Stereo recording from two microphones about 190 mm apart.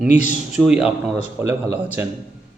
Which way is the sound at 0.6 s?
5° right (ahead or behind).